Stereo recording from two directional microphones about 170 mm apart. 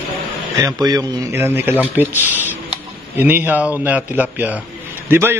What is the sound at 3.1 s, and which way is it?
A man's voice, 10° right (ahead or behind).